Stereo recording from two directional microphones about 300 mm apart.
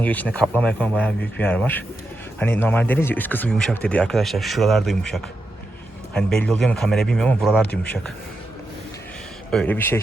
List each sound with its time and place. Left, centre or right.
0.0 s speech: centre
9.5 s speech: centre